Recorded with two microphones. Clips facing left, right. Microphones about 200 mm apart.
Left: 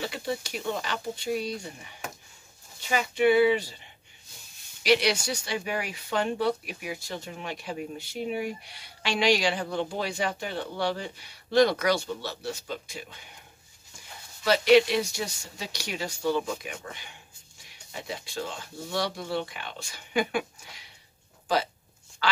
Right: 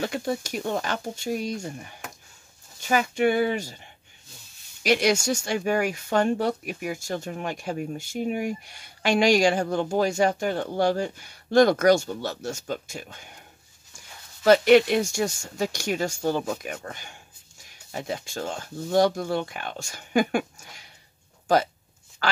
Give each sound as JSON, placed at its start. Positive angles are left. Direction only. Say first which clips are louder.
{"t": 0.0, "sound": "speech", "louder": "right 4 dB", "side_deg": -45}
{"t": 2.9, "sound": "speech", "louder": "right 1 dB", "side_deg": -45}
{"t": 4.8, "sound": "speech", "louder": "right 2 dB", "side_deg": -45}
{"t": 14.4, "sound": "speech", "louder": "right 4 dB", "side_deg": -50}
{"t": 22.2, "sound": "speech", "louder": "right 2 dB", "side_deg": -50}